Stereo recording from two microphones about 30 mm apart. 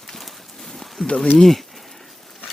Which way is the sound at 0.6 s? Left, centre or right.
Centre.